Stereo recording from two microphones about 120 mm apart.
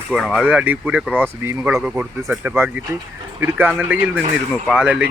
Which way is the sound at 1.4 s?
20° right (ahead or behind).